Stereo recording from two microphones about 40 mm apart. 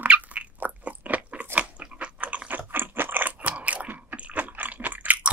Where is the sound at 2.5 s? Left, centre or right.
Right.